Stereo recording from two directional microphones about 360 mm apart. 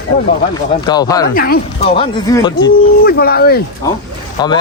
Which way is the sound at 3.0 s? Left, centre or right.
Left.